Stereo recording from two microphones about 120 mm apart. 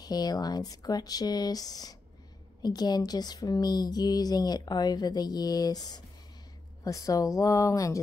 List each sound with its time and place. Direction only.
0.0 s speech: 35° left (ahead or behind)